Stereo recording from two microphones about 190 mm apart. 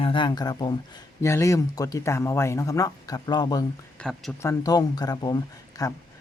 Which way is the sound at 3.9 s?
5° left (ahead or behind).